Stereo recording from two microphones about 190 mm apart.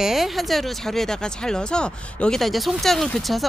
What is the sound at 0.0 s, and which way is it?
Speech, centre (ahead or behind).